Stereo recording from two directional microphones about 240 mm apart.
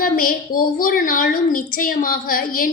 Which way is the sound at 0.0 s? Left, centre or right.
Left.